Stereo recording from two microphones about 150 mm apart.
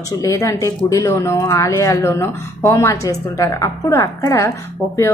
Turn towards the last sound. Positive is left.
turn(degrees=20)  # may be behind; listen again after turning